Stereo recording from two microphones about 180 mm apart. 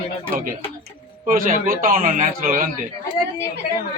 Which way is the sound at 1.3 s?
50° right (ahead or behind).